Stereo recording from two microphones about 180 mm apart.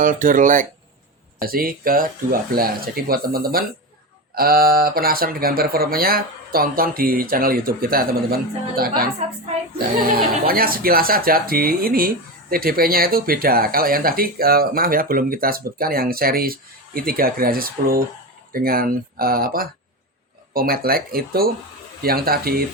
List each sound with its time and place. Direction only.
0.0 s speech: 50° right (ahead or behind)